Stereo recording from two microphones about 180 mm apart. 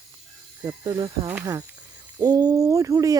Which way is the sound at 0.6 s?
20° right (ahead or behind).